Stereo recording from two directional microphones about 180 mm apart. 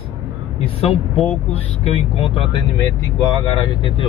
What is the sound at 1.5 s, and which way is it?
Speech, 35° left (ahead or behind).